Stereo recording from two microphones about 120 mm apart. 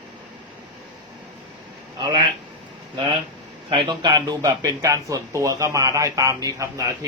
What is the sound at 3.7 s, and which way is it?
A man's voice, 40° right (ahead or behind).